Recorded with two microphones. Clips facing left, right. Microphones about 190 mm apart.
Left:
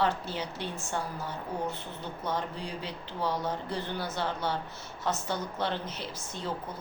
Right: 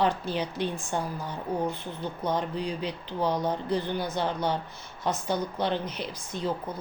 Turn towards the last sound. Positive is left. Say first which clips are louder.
# right 4 dB
turn(degrees=-15)  # may be behind; listen again after turning